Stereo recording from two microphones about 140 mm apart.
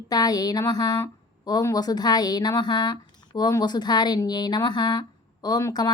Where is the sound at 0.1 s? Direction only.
30° left (ahead or behind).